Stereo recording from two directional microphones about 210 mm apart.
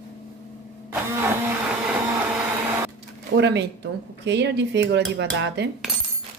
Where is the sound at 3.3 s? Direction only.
55° right (ahead or behind).